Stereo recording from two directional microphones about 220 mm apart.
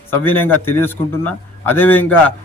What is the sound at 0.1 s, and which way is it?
A man's voice, 10° left (ahead or behind).